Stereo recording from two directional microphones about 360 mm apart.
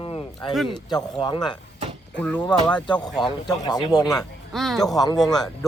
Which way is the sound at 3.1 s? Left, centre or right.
Centre.